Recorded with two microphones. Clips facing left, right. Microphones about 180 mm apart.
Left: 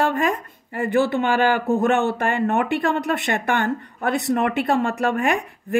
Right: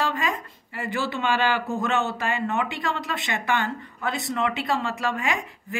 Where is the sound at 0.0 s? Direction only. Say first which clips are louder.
Left 6 dB; 55° left (ahead or behind).